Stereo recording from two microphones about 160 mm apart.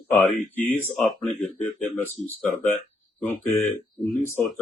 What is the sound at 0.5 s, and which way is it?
Speech, 10° left (ahead or behind).